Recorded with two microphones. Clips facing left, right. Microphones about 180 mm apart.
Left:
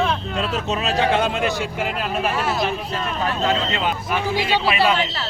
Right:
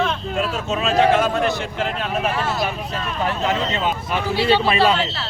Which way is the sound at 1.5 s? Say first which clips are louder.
Even; 10° left (ahead or behind).